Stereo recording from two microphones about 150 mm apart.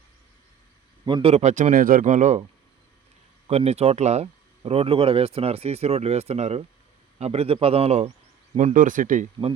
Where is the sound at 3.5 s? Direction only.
45° right (ahead or behind).